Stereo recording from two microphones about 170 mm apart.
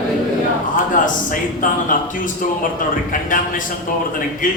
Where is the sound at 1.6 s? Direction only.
50° left (ahead or behind).